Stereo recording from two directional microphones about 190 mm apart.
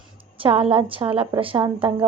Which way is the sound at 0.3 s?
30° right (ahead or behind).